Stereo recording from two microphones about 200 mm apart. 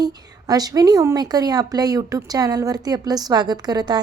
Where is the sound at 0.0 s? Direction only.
20° right (ahead or behind).